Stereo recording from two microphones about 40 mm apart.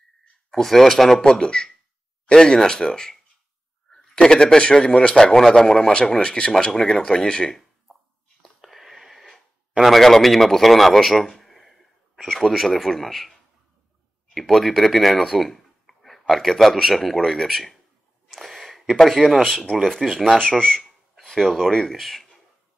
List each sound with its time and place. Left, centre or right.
0.5 s speech: centre
1.2 s a man's voice: centre
6.5 s speech: centre
8.5 s a sound: centre
9.8 s a man's voice: centre
14.3 s speech: centre
18.4 s a sound: centre
18.9 s a man's voice: centre
20.3 s speech: centre
21.5 s a man's voice: centre